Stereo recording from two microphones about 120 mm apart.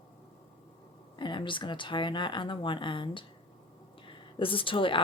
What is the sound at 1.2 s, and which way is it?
Speech, 40° left (ahead or behind).